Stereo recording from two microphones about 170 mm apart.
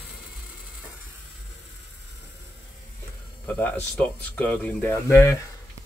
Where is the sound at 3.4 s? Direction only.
10° left (ahead or behind).